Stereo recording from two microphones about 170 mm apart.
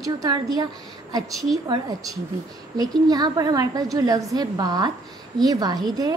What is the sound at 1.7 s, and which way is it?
A woman's voice, 20° right (ahead or behind).